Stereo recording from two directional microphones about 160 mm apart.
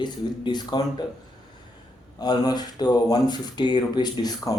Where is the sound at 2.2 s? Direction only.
25° left (ahead or behind).